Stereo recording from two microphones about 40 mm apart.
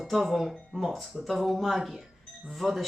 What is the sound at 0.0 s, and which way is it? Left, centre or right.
Speech, centre.